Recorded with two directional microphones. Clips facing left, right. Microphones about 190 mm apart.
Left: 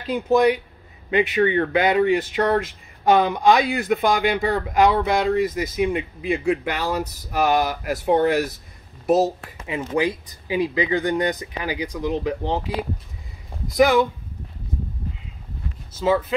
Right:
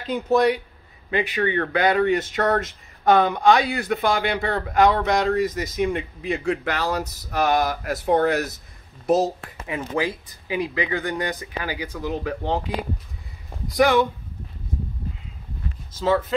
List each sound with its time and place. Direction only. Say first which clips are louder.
0.3 s speech: left 2 dB; 10° left (ahead or behind)
9.7 s speech: left 3 dB; 20° left (ahead or behind)
13.7 s speech: left 1 dB; 10° left (ahead or behind)
16.0 s speech: left 1 dB; 10° left (ahead or behind)